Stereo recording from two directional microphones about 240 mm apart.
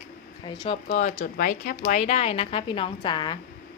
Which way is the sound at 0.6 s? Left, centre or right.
Left.